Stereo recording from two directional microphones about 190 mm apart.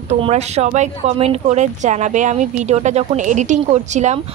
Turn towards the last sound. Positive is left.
turn(degrees=-40)  # may be behind; listen again after turning